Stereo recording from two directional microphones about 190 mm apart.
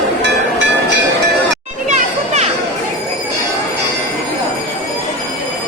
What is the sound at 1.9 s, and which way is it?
Children playing, 35° right (ahead or behind).